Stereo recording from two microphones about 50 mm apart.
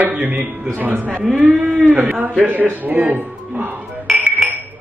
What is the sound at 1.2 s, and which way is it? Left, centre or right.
Speech, centre.